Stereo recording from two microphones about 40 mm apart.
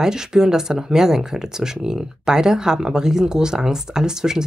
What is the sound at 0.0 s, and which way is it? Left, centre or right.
Speech, centre.